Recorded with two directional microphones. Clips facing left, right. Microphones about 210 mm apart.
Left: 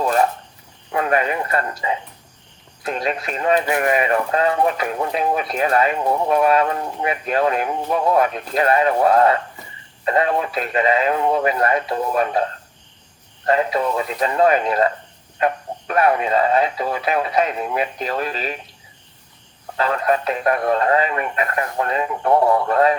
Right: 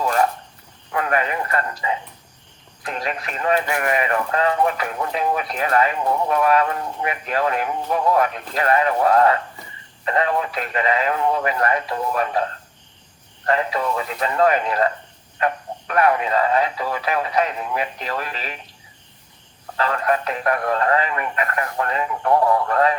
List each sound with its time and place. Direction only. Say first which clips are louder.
0.9 s speech: left 3 dB; 25° left (ahead or behind)
13.4 s speech: left 3 dB; 25° left (ahead or behind)
15.9 s speech: left 1 dB; 25° left (ahead or behind)
19.7 s speech: left 2 dB; 25° left (ahead or behind)